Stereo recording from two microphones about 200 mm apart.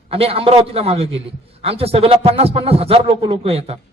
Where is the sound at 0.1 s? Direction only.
30° right (ahead or behind).